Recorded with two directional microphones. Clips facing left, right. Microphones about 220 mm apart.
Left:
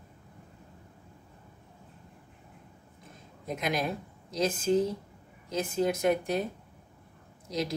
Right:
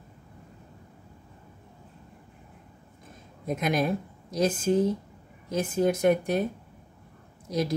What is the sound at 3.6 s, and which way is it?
Speech, 50° right (ahead or behind).